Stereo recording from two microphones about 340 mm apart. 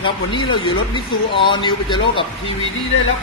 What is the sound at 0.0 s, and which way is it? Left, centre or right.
Speech, centre.